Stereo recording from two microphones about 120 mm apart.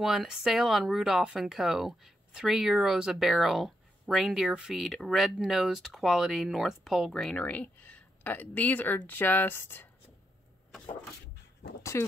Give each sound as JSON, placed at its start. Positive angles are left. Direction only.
{"t": 0.0, "sound": "speech", "side_deg": 0}
{"t": 11.8, "sound": "speech", "side_deg": 25}